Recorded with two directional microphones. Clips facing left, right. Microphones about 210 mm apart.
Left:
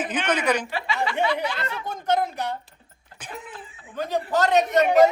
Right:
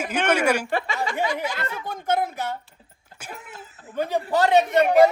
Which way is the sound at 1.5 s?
5° right (ahead or behind).